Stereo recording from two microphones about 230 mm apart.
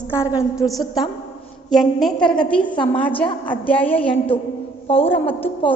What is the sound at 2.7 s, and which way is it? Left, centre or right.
Speech, centre.